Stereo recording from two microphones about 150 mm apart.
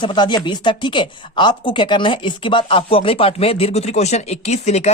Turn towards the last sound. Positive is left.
turn(degrees=45)  # may be behind; listen again after turning